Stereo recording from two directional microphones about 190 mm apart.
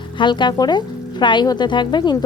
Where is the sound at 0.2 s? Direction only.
25° left (ahead or behind).